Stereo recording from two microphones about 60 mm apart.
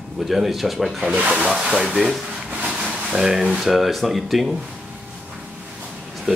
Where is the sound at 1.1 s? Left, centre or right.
Right.